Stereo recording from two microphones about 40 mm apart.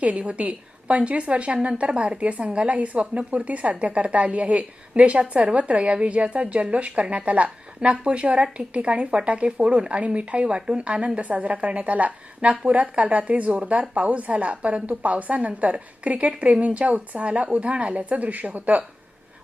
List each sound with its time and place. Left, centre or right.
0.0 s a woman's voice: right